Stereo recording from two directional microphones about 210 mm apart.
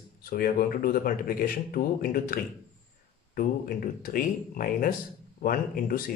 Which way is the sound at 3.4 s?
45° left (ahead or behind).